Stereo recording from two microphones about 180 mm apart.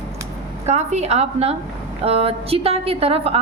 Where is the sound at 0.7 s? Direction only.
40° right (ahead or behind).